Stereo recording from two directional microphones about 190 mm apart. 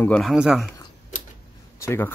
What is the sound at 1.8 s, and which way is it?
Speech, 15° left (ahead or behind).